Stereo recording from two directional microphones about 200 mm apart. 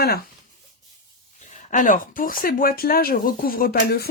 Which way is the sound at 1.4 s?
40° left (ahead or behind).